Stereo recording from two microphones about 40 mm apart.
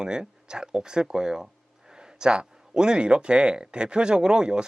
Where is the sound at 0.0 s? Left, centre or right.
Centre.